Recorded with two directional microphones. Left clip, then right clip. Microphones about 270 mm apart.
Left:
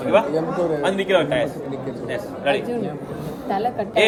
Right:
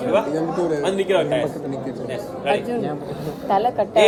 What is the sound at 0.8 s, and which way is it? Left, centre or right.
A man's voice, left.